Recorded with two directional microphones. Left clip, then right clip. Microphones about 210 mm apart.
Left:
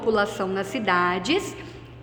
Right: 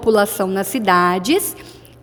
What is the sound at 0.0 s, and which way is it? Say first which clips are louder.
A woman's voice: right 7 dB; 50° right (ahead or behind).